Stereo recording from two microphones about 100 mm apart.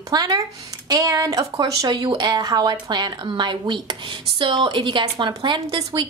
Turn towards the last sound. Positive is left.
turn(degrees=-45)  # may be behind; listen again after turning